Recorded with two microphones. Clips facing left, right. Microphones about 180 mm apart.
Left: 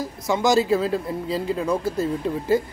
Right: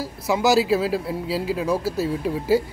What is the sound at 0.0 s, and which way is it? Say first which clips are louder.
Speech: right 1 dB; 5° right (ahead or behind).